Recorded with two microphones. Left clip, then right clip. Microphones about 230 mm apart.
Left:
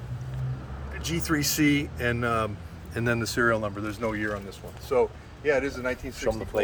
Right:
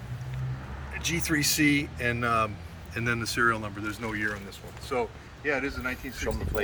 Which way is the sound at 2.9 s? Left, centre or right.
Left.